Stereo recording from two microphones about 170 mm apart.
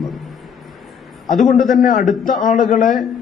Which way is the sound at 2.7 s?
55° left (ahead or behind).